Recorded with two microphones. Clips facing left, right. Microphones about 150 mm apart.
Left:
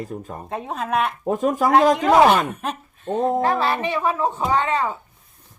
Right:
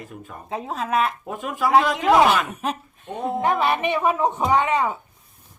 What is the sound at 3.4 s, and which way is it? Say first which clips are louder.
Speech: even; 20° right (ahead or behind).